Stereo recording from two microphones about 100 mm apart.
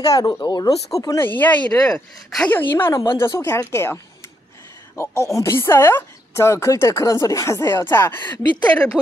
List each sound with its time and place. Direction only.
0.0 s speech: 40° left (ahead or behind)
0.9 s speech: 30° left (ahead or behind)
1.2 s a woman's voice: 15° left (ahead or behind)
2.9 s speech: 35° left (ahead or behind)
8.6 s a woman's voice: 10° left (ahead or behind)